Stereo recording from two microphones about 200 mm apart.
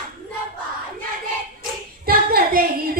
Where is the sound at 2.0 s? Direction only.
50° right (ahead or behind).